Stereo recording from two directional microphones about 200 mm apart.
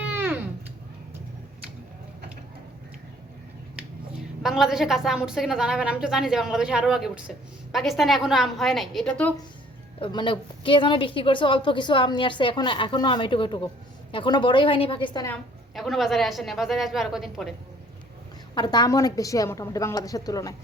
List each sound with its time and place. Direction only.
0.1 s a sound: 10° right (ahead or behind)
4.4 s a woman's voice: centre (ahead or behind)
10.0 s a woman's voice: 25° left (ahead or behind)
15.3 s a woman's voice: centre (ahead or behind)
18.5 s a woman's voice: 20° left (ahead or behind)